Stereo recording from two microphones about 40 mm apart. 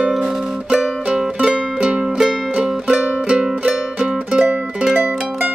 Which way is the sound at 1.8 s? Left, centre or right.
Right.